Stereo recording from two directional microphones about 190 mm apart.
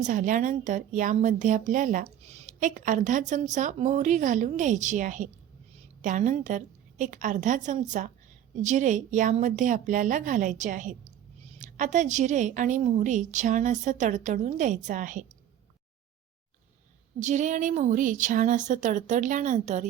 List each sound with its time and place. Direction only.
0.0 s speech: 45° right (ahead or behind)
17.2 s speech: 40° right (ahead or behind)